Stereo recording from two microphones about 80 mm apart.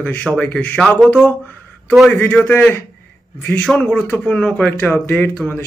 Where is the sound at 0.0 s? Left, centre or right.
Left.